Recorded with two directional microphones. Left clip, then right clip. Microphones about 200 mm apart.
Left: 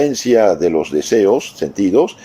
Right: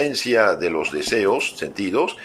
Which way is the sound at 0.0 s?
30° left (ahead or behind).